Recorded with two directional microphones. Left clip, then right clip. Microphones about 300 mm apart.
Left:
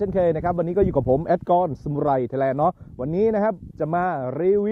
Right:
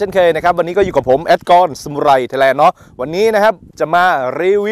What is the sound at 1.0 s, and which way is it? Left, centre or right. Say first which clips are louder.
Speech: right 9 dB; right.